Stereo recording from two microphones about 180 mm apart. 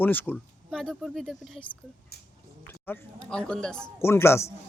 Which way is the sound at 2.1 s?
60° left (ahead or behind).